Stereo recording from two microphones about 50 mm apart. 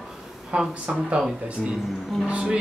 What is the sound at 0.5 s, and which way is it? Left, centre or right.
Speech, right.